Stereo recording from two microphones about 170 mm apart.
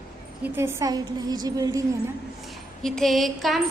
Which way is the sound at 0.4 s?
15° right (ahead or behind).